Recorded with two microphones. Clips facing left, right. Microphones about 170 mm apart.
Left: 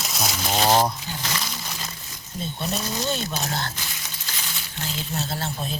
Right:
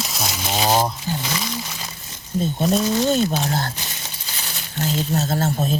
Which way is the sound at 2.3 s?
45° right (ahead or behind).